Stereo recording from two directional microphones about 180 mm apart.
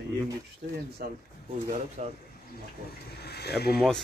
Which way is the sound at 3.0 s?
65° left (ahead or behind).